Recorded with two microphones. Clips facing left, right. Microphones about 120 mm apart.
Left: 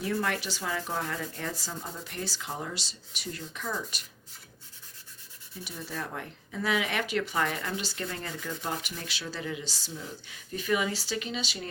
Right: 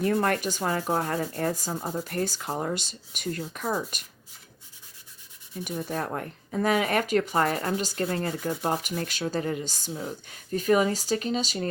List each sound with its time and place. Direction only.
0.0 s speech: 50° right (ahead or behind)
5.6 s speech: 50° right (ahead or behind)